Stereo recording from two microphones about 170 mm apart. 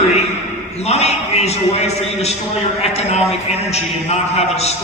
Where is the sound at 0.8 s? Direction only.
40° left (ahead or behind).